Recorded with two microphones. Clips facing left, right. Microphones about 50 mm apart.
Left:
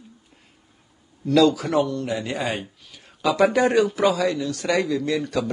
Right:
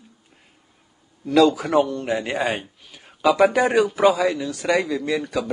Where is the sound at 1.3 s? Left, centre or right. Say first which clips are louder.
Right 1 dB; centre.